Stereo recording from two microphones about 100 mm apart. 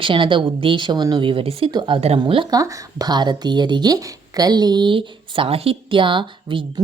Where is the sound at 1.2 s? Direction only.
65° right (ahead or behind).